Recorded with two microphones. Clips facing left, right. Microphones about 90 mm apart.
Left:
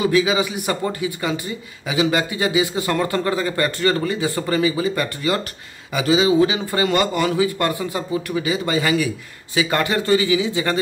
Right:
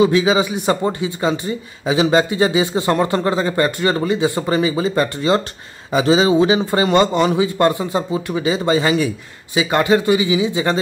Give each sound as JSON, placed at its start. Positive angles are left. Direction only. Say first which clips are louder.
{"t": 0.0, "sound": "speech", "louder": "right 4 dB", "side_deg": -25}